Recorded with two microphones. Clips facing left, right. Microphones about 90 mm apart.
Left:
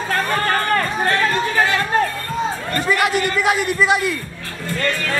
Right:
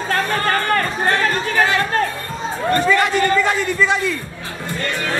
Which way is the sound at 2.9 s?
10° left (ahead or behind).